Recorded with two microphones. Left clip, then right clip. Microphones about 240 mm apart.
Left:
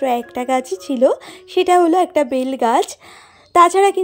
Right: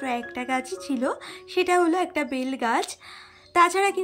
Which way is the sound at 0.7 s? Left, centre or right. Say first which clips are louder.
Left 12 dB; centre.